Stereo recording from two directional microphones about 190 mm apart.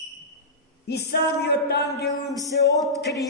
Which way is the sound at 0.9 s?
60° left (ahead or behind).